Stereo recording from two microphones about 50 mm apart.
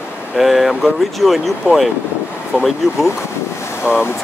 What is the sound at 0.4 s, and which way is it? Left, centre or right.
Speech, centre.